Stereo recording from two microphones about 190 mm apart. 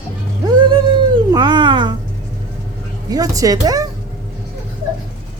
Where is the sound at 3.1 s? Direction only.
20° right (ahead or behind).